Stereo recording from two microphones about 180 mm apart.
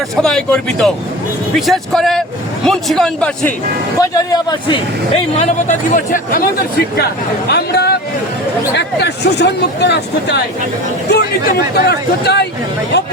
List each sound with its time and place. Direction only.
0.2 s a man's voice: 5° left (ahead or behind)
4.1 s a man's voice: 20° left (ahead or behind)
5.4 s speech: 40° left (ahead or behind)
7.5 s speech: 65° left (ahead or behind)
11.7 s speech: 65° left (ahead or behind)